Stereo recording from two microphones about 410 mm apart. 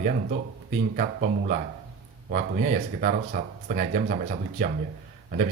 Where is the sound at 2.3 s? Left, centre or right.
Centre.